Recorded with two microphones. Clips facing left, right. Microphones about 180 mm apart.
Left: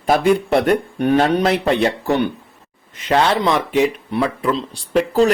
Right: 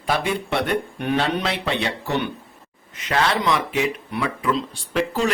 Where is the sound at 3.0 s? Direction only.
30° left (ahead or behind).